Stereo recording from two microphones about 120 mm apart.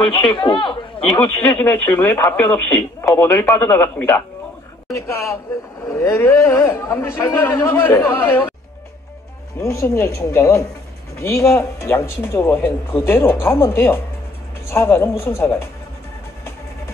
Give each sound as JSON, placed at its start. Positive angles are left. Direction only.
{"t": 0.2, "sound": "speech", "side_deg": 45}
{"t": 1.4, "sound": "speech", "side_deg": 15}
{"t": 9.6, "sound": "speech", "side_deg": 25}